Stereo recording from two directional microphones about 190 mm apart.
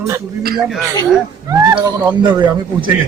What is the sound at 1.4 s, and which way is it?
A man's voice, 15° right (ahead or behind).